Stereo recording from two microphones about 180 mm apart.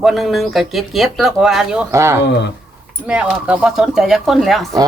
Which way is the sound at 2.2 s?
75° left (ahead or behind).